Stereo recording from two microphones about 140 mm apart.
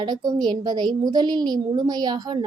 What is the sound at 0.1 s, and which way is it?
A woman's voice, 30° right (ahead or behind).